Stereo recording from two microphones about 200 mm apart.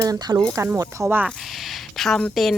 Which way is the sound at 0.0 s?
20° right (ahead or behind).